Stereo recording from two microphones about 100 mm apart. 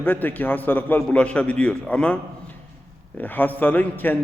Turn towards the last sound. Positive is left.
turn(degrees=20)  # may be behind; listen again after turning